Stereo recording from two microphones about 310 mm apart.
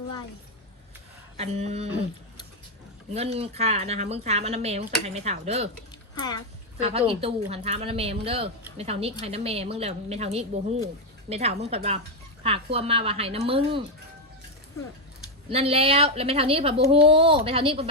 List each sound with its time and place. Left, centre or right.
1.4 s a woman's voice: right
3.1 s a woman's voice: centre
6.1 s speech: centre
6.7 s a woman's voice: centre
15.4 s a woman's voice: centre